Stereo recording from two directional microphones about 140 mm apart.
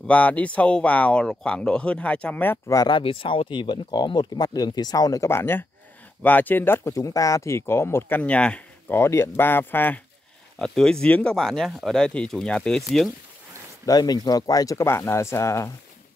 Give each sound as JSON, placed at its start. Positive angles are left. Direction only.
{"t": 0.0, "sound": "speech", "side_deg": 10}
{"t": 2.9, "sound": "speech", "side_deg": 40}
{"t": 10.6, "sound": "speech", "side_deg": 5}
{"t": 13.8, "sound": "speech", "side_deg": 25}